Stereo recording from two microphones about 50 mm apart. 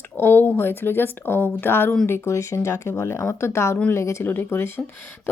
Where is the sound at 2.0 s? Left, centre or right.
Left.